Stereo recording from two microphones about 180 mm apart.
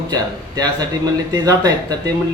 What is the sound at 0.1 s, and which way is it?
A man's voice, 20° right (ahead or behind).